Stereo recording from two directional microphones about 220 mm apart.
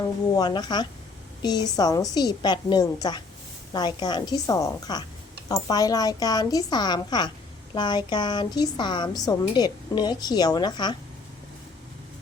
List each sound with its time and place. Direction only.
0.3 s a woman's voice: 20° left (ahead or behind)